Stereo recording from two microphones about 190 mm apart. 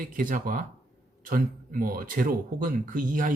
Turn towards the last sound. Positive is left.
turn(degrees=-45)  # may be behind; listen again after turning